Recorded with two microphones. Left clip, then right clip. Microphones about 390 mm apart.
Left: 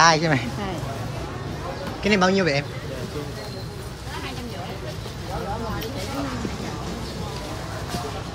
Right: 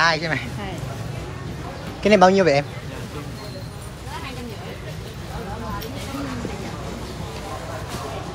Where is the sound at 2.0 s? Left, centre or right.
Centre.